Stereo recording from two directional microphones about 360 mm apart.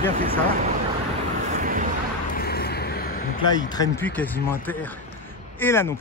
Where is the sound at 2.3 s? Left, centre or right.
Left.